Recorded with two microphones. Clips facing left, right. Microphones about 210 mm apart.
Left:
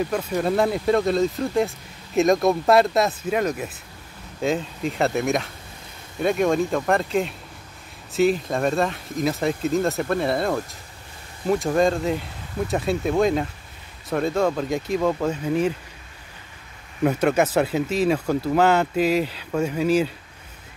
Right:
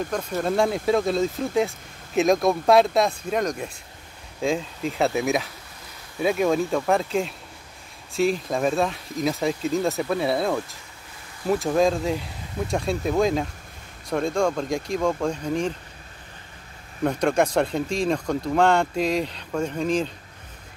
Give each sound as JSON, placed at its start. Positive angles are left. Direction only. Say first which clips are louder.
{"t": 0.0, "sound": "speech", "louder": "left 3 dB", "side_deg": 5}
{"t": 17.0, "sound": "speech", "louder": "left 2 dB", "side_deg": 5}